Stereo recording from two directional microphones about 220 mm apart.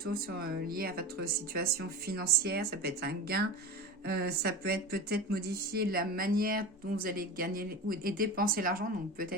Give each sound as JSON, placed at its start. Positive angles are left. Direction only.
{"t": 0.0, "sound": "speech", "side_deg": -40}